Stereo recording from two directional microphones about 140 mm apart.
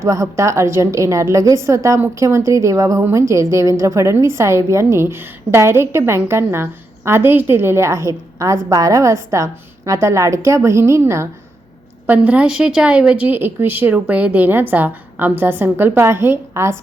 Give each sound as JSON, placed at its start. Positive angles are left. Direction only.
{"t": 0.0, "sound": "a woman's voice", "side_deg": -25}